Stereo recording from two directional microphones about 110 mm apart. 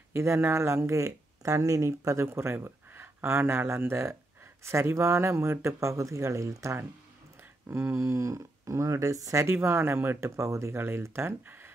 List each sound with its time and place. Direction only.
0.1 s speech: 25° right (ahead or behind)